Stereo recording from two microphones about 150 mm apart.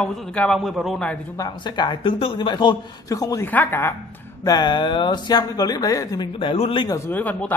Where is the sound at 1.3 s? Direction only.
25° left (ahead or behind).